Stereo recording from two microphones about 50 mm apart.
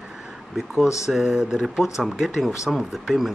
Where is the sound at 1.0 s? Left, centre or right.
Centre.